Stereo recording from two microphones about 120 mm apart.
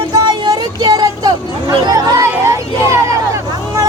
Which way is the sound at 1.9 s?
30° right (ahead or behind).